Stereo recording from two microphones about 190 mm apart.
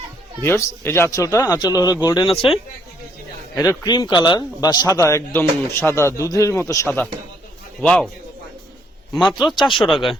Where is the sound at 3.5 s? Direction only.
15° left (ahead or behind).